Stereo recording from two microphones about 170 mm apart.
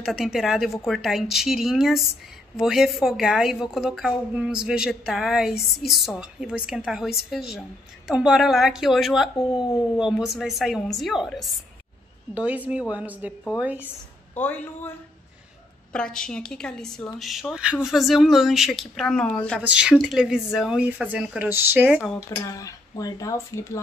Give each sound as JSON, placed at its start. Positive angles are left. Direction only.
{"t": 0.0, "sound": "a woman's voice", "side_deg": 0}
{"t": 14.4, "sound": "a woman's voice", "side_deg": 10}
{"t": 19.6, "sound": "a woman's voice", "side_deg": -5}
{"t": 22.3, "sound": "speech", "side_deg": 20}